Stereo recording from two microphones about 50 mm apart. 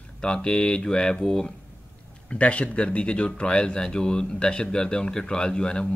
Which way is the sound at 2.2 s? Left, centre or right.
Left.